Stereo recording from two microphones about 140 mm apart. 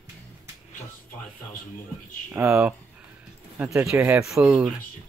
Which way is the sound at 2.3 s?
15° right (ahead or behind).